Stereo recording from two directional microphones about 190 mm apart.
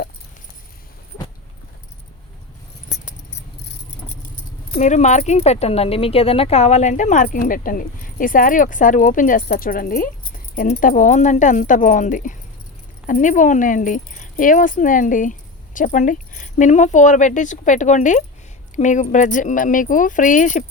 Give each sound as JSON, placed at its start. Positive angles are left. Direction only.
{"t": 4.8, "sound": "speech", "side_deg": 40}